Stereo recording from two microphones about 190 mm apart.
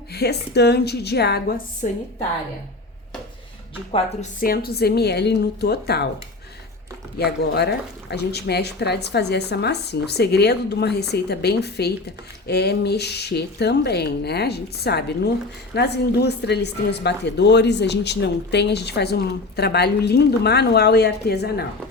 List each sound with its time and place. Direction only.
0.1 s speech: 60° left (ahead or behind)
3.9 s speech: 40° left (ahead or behind); by 6.1 s 55° left (ahead or behind)
7.2 s speech: 60° left (ahead or behind)